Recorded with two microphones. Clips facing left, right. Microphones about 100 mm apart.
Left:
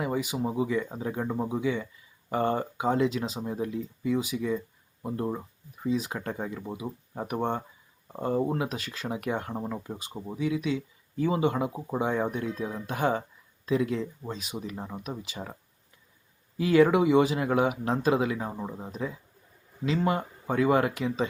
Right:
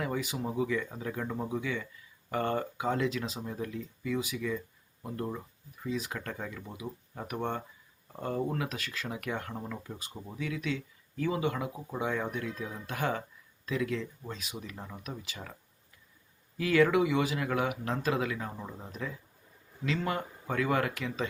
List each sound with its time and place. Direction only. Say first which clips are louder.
0.0 s speech: left 4 dB; 15° left (ahead or behind)
16.6 s speech: left 4 dB; 25° left (ahead or behind)